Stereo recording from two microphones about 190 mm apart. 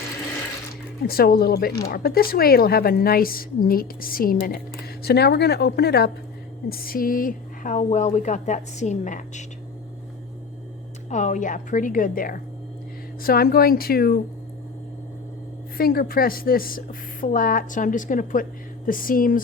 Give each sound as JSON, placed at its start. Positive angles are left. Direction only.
{"t": 1.0, "sound": "a woman's voice", "side_deg": 50}
{"t": 11.1, "sound": "a woman's voice", "side_deg": 40}
{"t": 15.8, "sound": "a woman's voice", "side_deg": 50}